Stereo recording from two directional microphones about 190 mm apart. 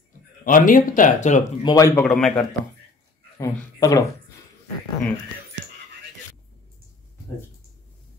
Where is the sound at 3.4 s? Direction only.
15° left (ahead or behind).